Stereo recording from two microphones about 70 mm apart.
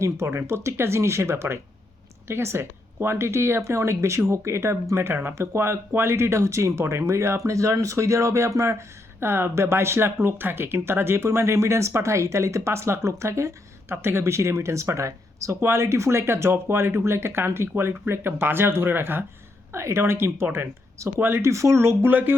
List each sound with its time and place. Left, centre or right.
0.0 s speech: right
9.2 s speech: right
19.7 s speech: right